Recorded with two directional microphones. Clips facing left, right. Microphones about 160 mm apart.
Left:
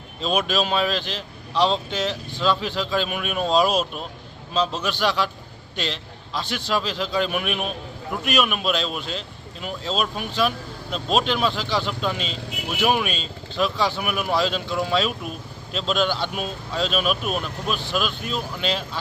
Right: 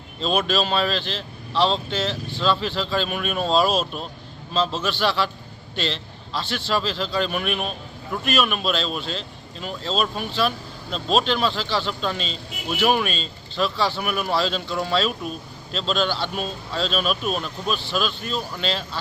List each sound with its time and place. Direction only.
0.2 s speech: 5° left (ahead or behind)
3.6 s speech: 15° left (ahead or behind)
13.6 s speech: 15° left (ahead or behind)
14.1 s speech: 5° left (ahead or behind)